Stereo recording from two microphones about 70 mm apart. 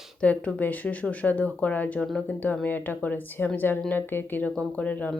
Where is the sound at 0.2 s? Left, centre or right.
Centre.